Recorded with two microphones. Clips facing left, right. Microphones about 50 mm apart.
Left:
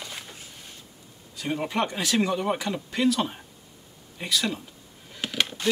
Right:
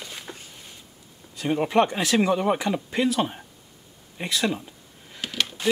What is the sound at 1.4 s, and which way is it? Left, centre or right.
Speech, centre.